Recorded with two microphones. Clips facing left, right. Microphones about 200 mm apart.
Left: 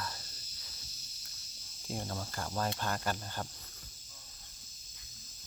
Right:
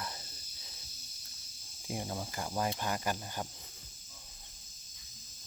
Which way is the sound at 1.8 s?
10° right (ahead or behind).